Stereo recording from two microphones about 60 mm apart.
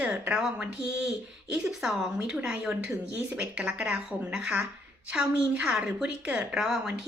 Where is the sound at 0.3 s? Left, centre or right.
Centre.